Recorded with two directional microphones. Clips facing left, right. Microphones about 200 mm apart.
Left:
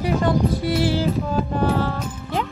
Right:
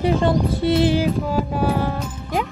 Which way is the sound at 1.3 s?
10° right (ahead or behind).